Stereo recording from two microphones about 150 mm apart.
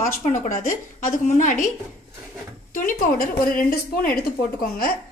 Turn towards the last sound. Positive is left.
turn(degrees=80)